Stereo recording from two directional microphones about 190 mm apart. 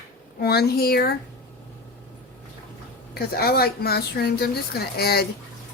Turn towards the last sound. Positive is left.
turn(degrees=55)  # may be behind; listen again after turning